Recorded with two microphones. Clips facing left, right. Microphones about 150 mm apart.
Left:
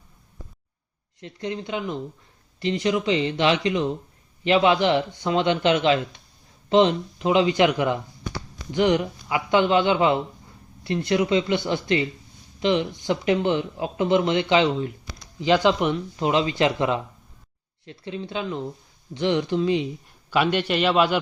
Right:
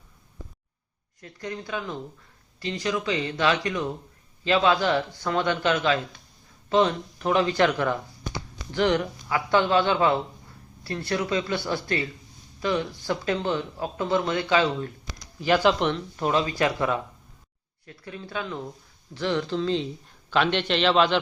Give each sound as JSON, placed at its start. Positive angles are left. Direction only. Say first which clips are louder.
{"t": 1.2, "sound": "speech", "louder": "left 4 dB", "side_deg": 20}